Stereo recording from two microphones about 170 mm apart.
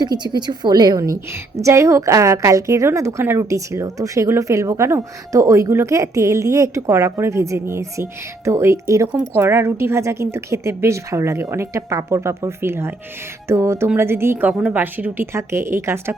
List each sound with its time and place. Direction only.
0.0 s a woman's voice: 25° right (ahead or behind)